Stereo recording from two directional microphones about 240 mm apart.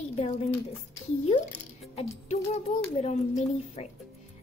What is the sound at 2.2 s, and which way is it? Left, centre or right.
A woman's voice, left.